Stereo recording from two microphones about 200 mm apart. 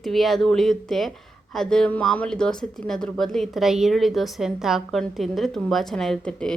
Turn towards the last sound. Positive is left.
turn(degrees=5)  # may be behind; listen again after turning